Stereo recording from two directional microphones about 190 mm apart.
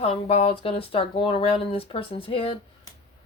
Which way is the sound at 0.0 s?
30° left (ahead or behind).